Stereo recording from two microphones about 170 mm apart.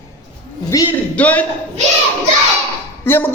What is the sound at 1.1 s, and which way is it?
Speech, 10° left (ahead or behind).